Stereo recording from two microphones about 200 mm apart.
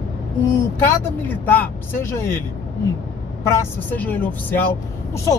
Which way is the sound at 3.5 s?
10° left (ahead or behind).